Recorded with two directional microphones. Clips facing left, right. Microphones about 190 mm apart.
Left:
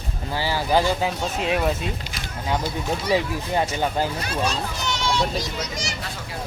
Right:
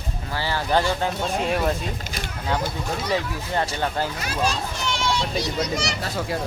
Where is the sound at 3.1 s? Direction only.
10° left (ahead or behind).